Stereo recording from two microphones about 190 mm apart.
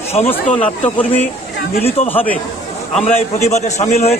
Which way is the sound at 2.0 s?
10° left (ahead or behind).